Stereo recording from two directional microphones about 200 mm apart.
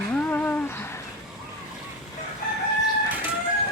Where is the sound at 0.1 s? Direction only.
10° left (ahead or behind).